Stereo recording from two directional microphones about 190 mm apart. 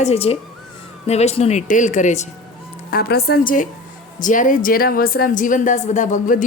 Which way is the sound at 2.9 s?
55° left (ahead or behind).